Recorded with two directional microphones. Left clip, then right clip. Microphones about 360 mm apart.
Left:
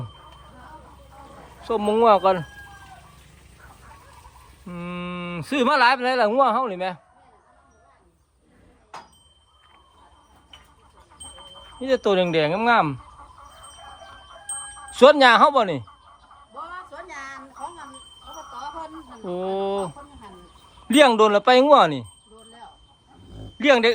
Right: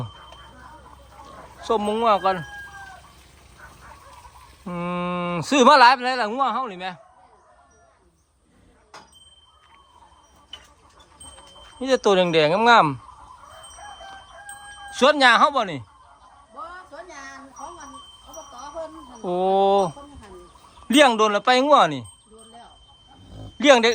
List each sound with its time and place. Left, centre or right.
1.6 s speech: centre
4.6 s speech: centre
11.8 s speech: centre
14.8 s speech: centre
16.9 s a sound: left
19.2 s speech: centre
23.6 s speech: centre